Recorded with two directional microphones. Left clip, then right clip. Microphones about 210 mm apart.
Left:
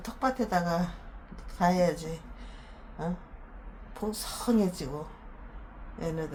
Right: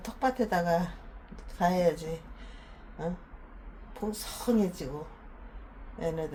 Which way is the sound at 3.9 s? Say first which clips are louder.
Left 1 dB; 5° left (ahead or behind).